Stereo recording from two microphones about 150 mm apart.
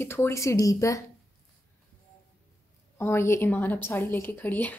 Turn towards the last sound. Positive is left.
turn(degrees=10)  # may be behind; listen again after turning